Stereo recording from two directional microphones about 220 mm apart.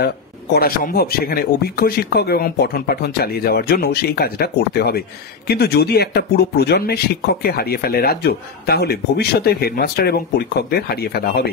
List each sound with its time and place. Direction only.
0.6 s speech: 40° left (ahead or behind)